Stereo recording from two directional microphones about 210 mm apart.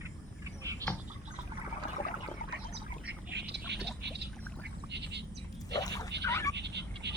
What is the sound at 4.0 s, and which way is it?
Pour, 55° right (ahead or behind).